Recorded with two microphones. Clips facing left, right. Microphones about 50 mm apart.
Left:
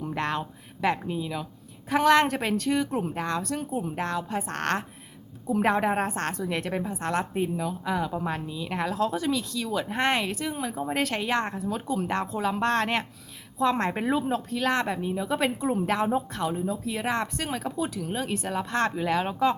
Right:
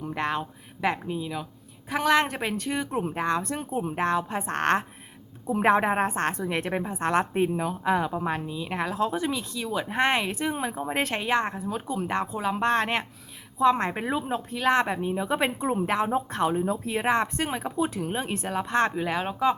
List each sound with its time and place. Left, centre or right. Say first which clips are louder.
0.0 s speech: even; centre; by 8.1 s right
8.1 s speech: right 2 dB; centre
10.3 s speech: right 2 dB; right
10.8 s speech: even; centre
16.3 s speech: right 4 dB; right
16.9 s speech: right 6 dB; right
17.9 s speech: right 2 dB; right
18.2 s speech: left 2 dB; right